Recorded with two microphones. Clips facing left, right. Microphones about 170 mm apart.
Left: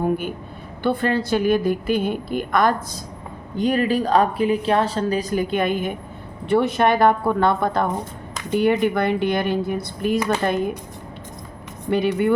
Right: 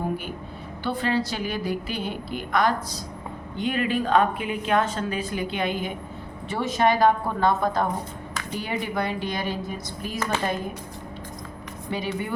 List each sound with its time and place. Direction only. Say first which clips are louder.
0.8 s a woman's voice: left 5 dB; 55° left (ahead or behind)
3.6 s a woman's voice: left 5 dB; 40° left (ahead or behind); by 10.2 s 60° left (ahead or behind)
11.9 s speech: left 10 dB; 60° left (ahead or behind)